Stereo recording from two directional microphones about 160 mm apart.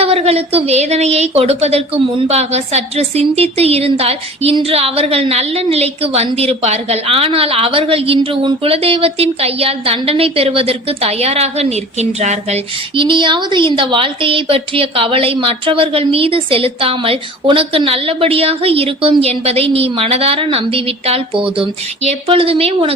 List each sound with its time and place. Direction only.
0.0 s a woman's voice: 40° right (ahead or behind)